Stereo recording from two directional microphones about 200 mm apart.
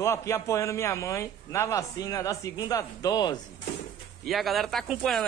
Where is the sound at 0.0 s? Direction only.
15° left (ahead or behind).